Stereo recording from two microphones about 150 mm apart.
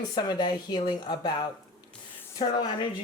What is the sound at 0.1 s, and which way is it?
Speech, 30° left (ahead or behind).